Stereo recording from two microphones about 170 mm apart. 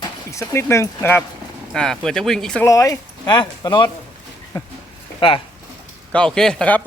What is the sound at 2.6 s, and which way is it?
Speech, 20° left (ahead or behind).